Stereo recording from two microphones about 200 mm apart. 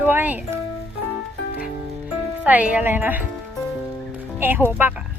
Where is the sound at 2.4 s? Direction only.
5° right (ahead or behind).